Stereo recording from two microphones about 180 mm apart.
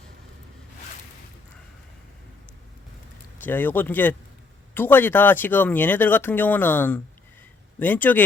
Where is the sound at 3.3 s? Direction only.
10° left (ahead or behind).